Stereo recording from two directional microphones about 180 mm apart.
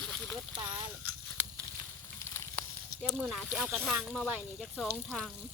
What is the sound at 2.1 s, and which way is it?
Sizzle, 15° left (ahead or behind).